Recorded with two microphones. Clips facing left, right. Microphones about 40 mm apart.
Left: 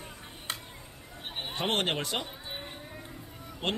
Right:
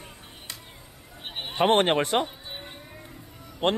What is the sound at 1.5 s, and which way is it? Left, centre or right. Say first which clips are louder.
Speech: right 9 dB; right.